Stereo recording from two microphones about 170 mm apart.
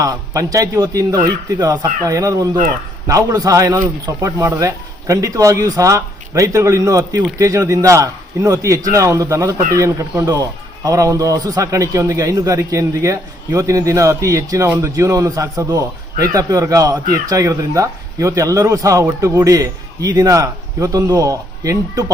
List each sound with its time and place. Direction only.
0.0 s a man's voice: 20° right (ahead or behind)